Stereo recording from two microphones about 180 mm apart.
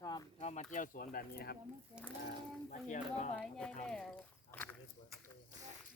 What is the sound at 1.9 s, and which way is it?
Speech, 5° right (ahead or behind).